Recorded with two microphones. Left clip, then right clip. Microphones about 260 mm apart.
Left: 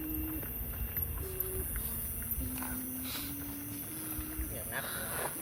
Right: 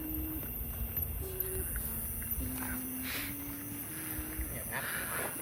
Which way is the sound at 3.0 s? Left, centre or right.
Centre.